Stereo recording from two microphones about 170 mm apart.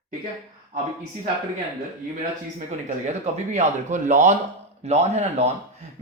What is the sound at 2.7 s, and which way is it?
A man's voice, 45° right (ahead or behind).